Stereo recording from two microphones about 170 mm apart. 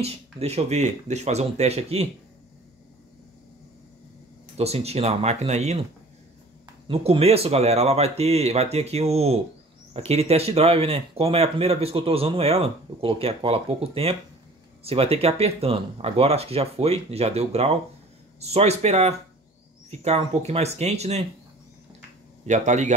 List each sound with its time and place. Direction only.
0.0 s speech: 35° right (ahead or behind)
4.6 s speech: 35° right (ahead or behind)
6.9 s speech: 35° right (ahead or behind)
22.5 s speech: 45° right (ahead or behind)